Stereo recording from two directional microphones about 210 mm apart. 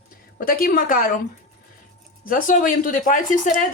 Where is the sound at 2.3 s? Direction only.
40° left (ahead or behind).